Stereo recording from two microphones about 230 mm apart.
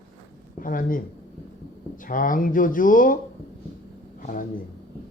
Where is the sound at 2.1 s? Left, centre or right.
Left.